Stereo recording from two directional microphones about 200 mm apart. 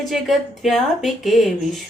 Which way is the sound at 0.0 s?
Centre (ahead or behind).